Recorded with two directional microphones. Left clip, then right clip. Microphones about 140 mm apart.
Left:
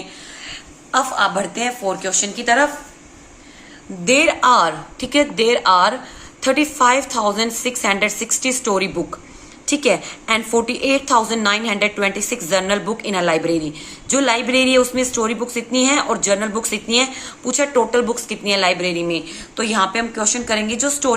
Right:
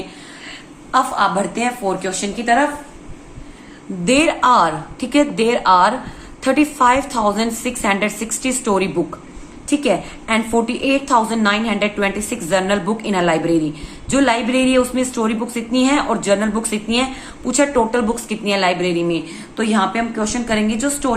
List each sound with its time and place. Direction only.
0.4 s a woman's voice: 15° left (ahead or behind)
4.0 s a woman's voice: 10° left (ahead or behind)